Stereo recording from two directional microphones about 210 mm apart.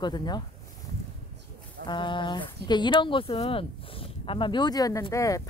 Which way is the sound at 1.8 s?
20° left (ahead or behind).